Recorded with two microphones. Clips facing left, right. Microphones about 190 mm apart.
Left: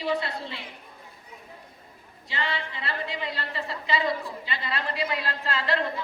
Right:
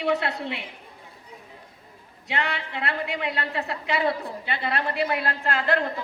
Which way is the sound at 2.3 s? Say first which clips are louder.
Right 3 dB; 65° right (ahead or behind).